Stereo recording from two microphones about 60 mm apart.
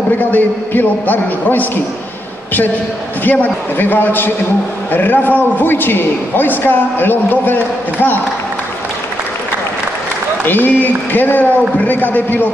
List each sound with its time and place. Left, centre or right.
0.2 s a man's voice: left
3.3 s a man's voice: left
10.4 s a man's voice: left